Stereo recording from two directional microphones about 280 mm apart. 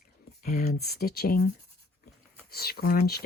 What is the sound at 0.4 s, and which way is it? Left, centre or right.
Speech, left.